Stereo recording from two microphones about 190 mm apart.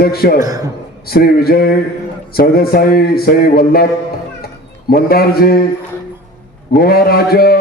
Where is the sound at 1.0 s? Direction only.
55° left (ahead or behind).